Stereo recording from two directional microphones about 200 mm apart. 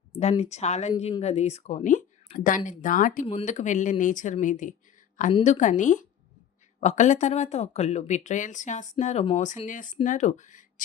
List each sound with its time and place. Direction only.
0.2 s speech: 30° left (ahead or behind)